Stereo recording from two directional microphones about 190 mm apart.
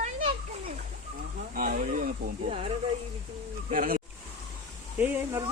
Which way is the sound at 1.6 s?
45° right (ahead or behind).